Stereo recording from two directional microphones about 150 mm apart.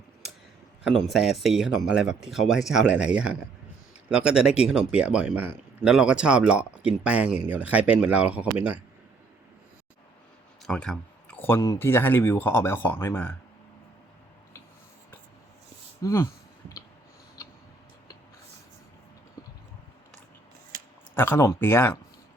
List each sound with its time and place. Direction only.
0.9 s speech: centre (ahead or behind)
10.7 s speech: 5° left (ahead or behind)
16.0 s clicking: 20° left (ahead or behind)
21.2 s speech: 15° left (ahead or behind)